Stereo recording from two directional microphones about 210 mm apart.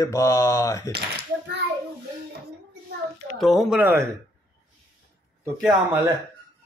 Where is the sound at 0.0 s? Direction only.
15° left (ahead or behind).